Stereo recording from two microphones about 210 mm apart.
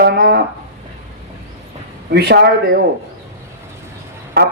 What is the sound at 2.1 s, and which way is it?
Speech, 50° right (ahead or behind).